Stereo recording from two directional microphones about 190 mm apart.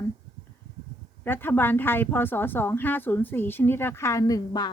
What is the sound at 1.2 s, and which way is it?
Speech, 10° left (ahead or behind).